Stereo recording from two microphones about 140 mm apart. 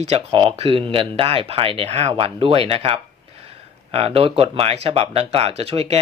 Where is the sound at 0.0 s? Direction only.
45° right (ahead or behind).